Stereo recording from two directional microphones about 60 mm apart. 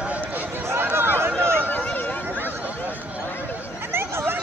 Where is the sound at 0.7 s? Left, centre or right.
Right.